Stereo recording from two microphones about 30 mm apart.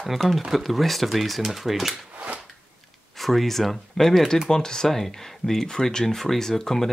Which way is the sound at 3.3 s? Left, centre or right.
Centre.